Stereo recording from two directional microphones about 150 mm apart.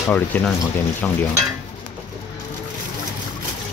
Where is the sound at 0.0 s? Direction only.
5° left (ahead or behind).